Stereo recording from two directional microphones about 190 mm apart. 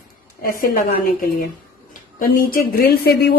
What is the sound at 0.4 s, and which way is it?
Speech, 50° left (ahead or behind).